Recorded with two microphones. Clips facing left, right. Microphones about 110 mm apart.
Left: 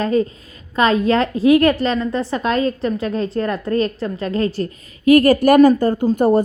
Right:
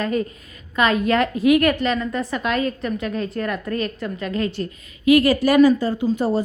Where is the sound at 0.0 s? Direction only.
30° left (ahead or behind).